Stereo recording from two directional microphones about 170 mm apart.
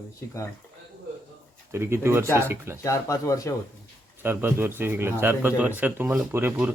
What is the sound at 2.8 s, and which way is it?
Speech, 20° left (ahead or behind).